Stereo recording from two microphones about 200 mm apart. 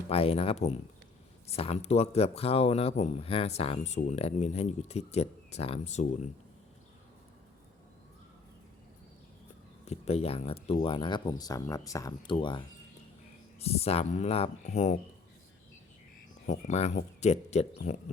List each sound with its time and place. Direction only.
0.1 s speech: 30° left (ahead or behind)
9.8 s speech: 30° left (ahead or behind)
16.5 s speech: 35° left (ahead or behind)